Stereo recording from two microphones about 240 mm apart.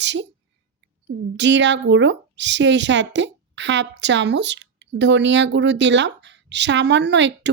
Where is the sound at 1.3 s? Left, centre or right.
Right.